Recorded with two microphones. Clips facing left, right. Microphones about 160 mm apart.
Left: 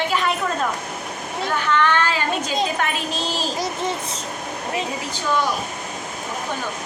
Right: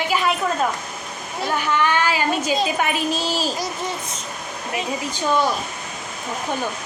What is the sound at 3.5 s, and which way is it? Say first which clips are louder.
Speech: left 2 dB; 25° left (ahead or behind).